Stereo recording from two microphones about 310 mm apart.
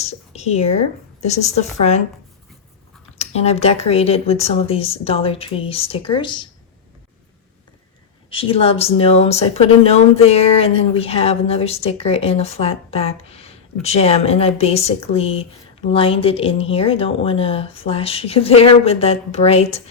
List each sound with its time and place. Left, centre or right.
0.0 s speech: left
3.2 s speech: centre
8.3 s speech: centre